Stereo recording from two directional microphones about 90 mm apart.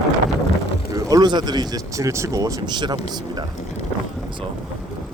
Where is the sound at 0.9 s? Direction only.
40° right (ahead or behind).